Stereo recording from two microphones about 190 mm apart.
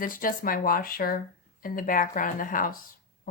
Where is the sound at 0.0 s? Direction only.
45° left (ahead or behind).